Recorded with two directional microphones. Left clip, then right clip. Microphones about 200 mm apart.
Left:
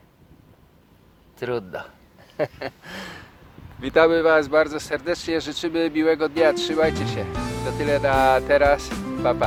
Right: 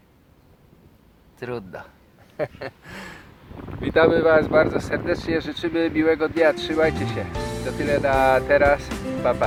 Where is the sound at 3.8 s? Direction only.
10° left (ahead or behind).